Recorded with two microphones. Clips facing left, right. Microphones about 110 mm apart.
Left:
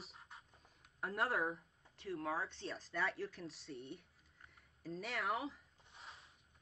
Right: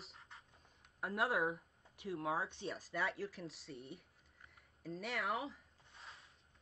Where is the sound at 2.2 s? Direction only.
15° right (ahead or behind).